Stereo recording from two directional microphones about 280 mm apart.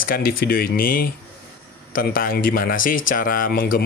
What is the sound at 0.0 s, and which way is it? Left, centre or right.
Speech, left.